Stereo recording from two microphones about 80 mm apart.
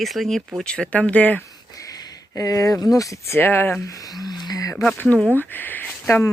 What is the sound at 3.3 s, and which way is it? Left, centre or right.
Speech, left.